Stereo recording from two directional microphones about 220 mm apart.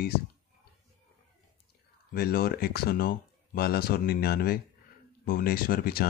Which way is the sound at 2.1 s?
45° left (ahead or behind).